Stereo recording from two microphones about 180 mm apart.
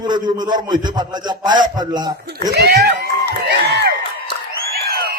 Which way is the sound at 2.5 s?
65° right (ahead or behind).